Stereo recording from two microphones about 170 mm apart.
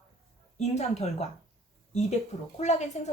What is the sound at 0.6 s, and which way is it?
A woman's voice, 40° left (ahead or behind).